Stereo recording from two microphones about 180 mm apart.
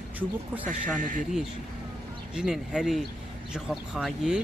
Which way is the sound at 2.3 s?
5° right (ahead or behind).